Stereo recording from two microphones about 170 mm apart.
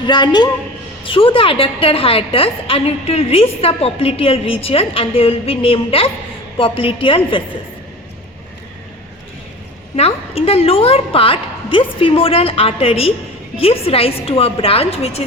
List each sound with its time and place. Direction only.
0.0 s a woman's voice: 25° left (ahead or behind)
9.9 s a woman's voice: 35° left (ahead or behind)